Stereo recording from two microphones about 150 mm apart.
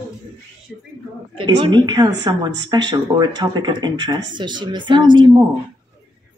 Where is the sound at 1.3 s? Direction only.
30° right (ahead or behind).